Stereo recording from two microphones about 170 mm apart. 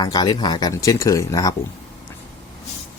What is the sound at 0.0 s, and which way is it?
Speech, 20° left (ahead or behind).